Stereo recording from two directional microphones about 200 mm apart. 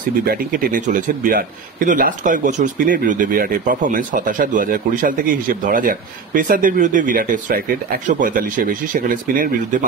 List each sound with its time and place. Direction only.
0.3 s a man's voice: 40° right (ahead or behind)